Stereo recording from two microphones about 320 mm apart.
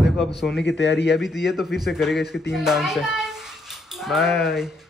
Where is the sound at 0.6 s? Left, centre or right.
Left.